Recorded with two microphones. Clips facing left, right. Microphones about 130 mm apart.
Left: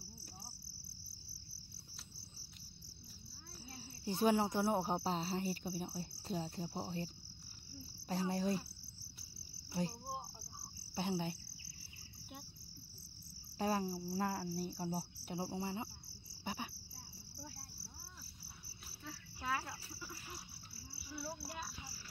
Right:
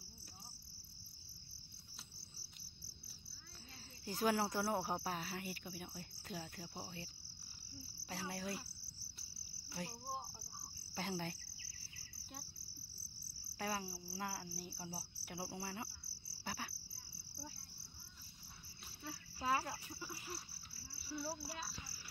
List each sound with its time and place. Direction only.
4.0 s speech: 20° left (ahead or behind)
8.1 s speech: 30° left (ahead or behind)
9.7 s insect: 25° left (ahead or behind)
10.0 s insect: centre (ahead or behind)
11.0 s speech: 20° left (ahead or behind)
13.7 s cricket: 40° left (ahead or behind)
15.2 s speech: 25° left (ahead or behind)
16.4 s cricket: 20° left (ahead or behind)
19.4 s insect: 25° right (ahead or behind)
20.9 s speech: 5° left (ahead or behind)